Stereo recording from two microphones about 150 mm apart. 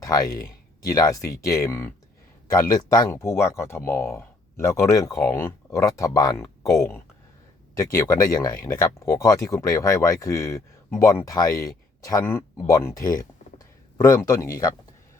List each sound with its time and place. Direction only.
0.0 s speech: 20° left (ahead or behind)